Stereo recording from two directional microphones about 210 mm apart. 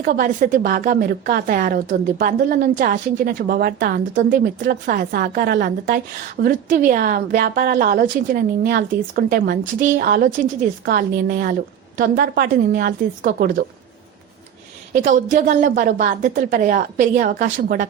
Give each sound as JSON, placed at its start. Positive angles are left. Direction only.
{"t": 0.0, "sound": "a woman's voice", "side_deg": -40}
{"t": 14.9, "sound": "a woman's voice", "side_deg": -40}